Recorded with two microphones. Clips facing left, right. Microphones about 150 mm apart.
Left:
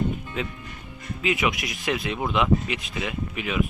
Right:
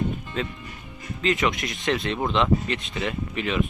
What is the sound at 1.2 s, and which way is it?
Speech, 5° left (ahead or behind).